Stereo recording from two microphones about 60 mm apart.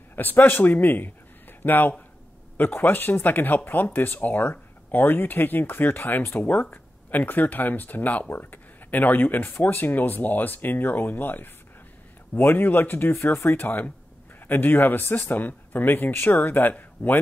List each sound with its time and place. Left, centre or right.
0.1 s speech: left